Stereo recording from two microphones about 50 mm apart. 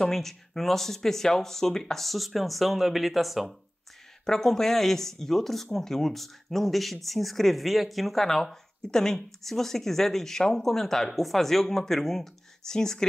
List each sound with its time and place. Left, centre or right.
0.0 s speech: centre